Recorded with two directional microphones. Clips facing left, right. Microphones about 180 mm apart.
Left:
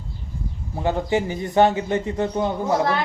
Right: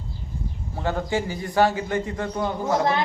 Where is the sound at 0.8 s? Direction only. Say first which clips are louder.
Left 4 dB; 20° left (ahead or behind).